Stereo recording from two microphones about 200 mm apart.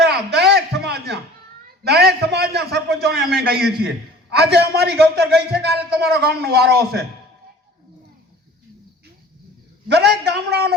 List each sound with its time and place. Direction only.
0.0 s a sound: 55° right (ahead or behind)
4.3 s a man's voice: 55° right (ahead or behind)
9.9 s a man's voice: 55° right (ahead or behind)